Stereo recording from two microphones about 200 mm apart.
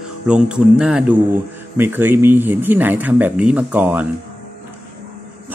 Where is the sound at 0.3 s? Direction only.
5° right (ahead or behind).